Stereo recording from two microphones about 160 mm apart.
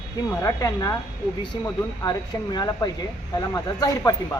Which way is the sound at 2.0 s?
25° left (ahead or behind).